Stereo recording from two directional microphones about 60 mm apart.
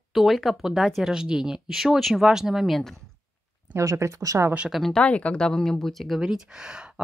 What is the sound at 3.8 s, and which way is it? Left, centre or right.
Speech, right.